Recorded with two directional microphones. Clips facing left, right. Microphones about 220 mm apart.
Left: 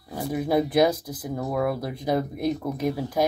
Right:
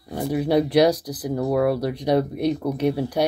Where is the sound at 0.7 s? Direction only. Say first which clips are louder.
Right 4 dB; 90° right.